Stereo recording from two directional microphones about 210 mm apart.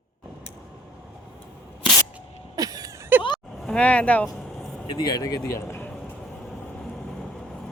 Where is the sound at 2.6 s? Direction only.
15° right (ahead or behind).